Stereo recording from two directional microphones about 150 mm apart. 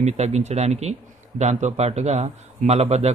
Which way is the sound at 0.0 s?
50° right (ahead or behind).